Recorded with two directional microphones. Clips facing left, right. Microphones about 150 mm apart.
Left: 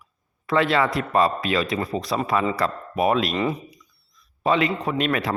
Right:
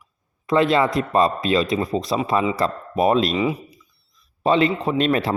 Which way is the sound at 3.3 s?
10° right (ahead or behind).